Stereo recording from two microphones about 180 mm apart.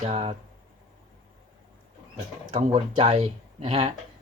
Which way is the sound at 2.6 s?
35° right (ahead or behind).